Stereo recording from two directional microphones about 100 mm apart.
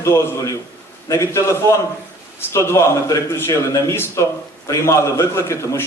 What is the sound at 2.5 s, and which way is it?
A man's voice, 30° left (ahead or behind).